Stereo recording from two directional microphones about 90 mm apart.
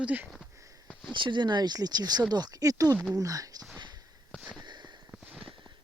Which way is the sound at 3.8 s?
55° right (ahead or behind).